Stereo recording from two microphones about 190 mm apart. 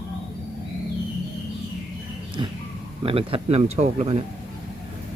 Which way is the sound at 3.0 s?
30° right (ahead or behind).